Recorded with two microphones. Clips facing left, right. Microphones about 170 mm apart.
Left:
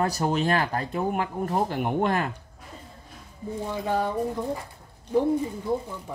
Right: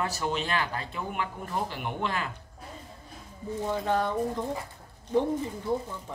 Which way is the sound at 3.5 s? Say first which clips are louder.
Even; 10° left (ahead or behind).